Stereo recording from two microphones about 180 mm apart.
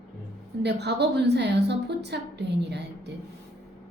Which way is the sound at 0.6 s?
70° right (ahead or behind).